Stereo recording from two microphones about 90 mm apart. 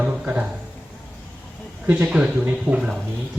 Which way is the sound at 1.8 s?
15° right (ahead or behind).